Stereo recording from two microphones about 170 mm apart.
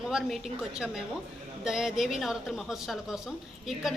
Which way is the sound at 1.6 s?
5° right (ahead or behind).